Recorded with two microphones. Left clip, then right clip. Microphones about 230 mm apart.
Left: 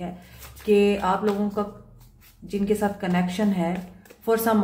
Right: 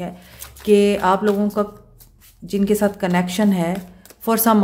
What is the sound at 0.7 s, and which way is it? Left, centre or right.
Speech, right.